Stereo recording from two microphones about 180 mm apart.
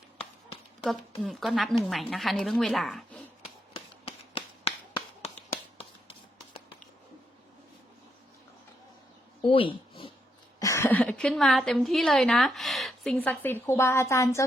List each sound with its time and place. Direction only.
0.9 s a woman's voice: centre (ahead or behind)
3.4 s a sound: 35° left (ahead or behind)
9.5 s speech: 30° left (ahead or behind)
10.6 s a woman's voice: 15° left (ahead or behind)